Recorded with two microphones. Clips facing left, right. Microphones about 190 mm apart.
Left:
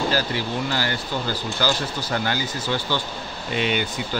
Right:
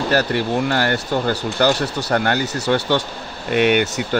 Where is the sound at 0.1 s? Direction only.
65° right (ahead or behind).